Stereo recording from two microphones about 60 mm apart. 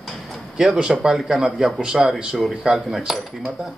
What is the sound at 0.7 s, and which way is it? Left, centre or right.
Speech, centre.